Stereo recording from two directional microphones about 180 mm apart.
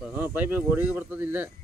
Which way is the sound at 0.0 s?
10° right (ahead or behind).